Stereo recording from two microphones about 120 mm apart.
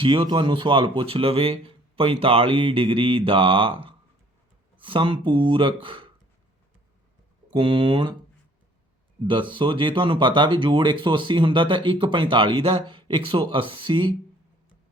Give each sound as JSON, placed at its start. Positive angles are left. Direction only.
{"t": 0.0, "sound": "speech", "side_deg": -45}
{"t": 7.5, "sound": "speech", "side_deg": -45}
{"t": 9.2, "sound": "speech", "side_deg": -45}